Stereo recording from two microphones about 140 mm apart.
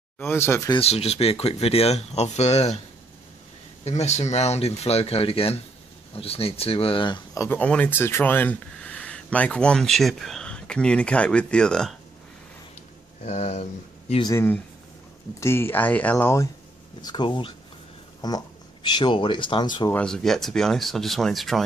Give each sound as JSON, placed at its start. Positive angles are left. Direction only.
{"t": 0.2, "sound": "speech", "side_deg": 15}
{"t": 0.7, "sound": "speech", "side_deg": 45}
{"t": 3.8, "sound": "speech", "side_deg": 50}
{"t": 7.3, "sound": "speech", "side_deg": 15}
{"t": 13.2, "sound": "speech", "side_deg": 50}
{"t": 14.3, "sound": "speech", "side_deg": 15}
{"t": 17.0, "sound": "speech", "side_deg": 35}
{"t": 19.9, "sound": "speech", "side_deg": 5}